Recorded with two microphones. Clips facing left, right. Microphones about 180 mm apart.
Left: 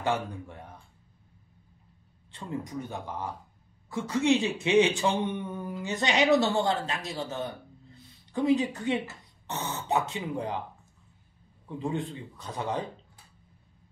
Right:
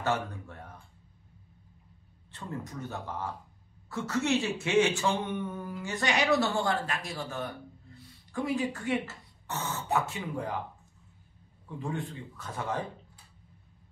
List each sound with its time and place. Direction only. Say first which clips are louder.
0.0 s speech: left 1 dB; 15° left (ahead or behind)
2.3 s speech: left 4 dB; 15° left (ahead or behind)
11.8 s speech: left 4 dB; 20° left (ahead or behind)